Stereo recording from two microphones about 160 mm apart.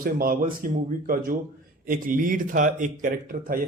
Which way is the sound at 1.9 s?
60° right (ahead or behind).